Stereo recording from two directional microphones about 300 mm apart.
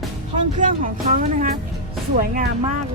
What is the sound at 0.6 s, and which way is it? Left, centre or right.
Speech, right.